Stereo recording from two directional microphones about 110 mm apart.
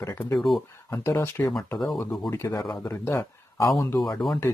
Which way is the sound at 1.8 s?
Centre (ahead or behind).